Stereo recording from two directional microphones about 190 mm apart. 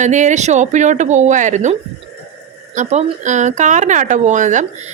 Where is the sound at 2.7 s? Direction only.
40° right (ahead or behind).